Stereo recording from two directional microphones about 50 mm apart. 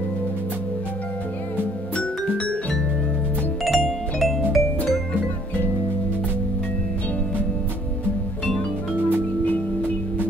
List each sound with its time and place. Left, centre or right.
2.0 s music: left
3.6 s music: centre